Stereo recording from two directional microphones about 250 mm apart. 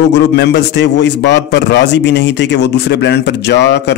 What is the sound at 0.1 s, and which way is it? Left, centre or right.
Speech, left.